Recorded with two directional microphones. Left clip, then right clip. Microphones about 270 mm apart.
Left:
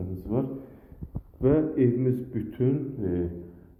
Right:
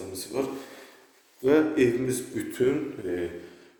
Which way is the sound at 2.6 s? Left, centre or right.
Right.